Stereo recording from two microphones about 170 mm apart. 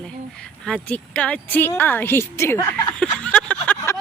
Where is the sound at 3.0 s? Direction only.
5° left (ahead or behind).